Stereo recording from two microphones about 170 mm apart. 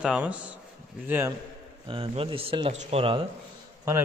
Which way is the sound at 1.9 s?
30° right (ahead or behind).